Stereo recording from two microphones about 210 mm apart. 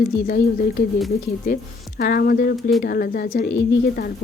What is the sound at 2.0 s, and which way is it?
Speech, 45° left (ahead or behind).